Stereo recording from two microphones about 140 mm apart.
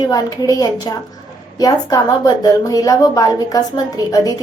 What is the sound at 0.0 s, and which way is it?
A woman's voice, 25° left (ahead or behind).